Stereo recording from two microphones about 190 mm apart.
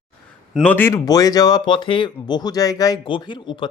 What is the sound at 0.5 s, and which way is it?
Speech, 10° left (ahead or behind).